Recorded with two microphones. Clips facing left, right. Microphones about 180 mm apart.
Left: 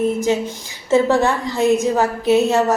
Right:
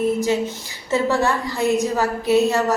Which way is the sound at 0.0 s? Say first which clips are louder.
Left 1 dB; 20° left (ahead or behind).